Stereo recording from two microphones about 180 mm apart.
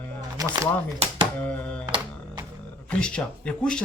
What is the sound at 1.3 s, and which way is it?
Speech, 10° left (ahead or behind).